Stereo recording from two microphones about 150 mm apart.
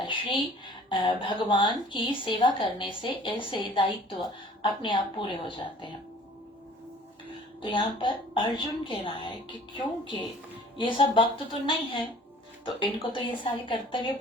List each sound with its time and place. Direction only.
0.0 s a woman's voice: 30° left (ahead or behind)
7.6 s a woman's voice: 35° left (ahead or behind)